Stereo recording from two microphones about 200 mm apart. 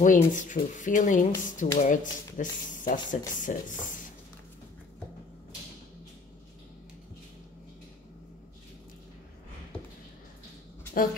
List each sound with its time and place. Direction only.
0.0 s speech: 40° left (ahead or behind)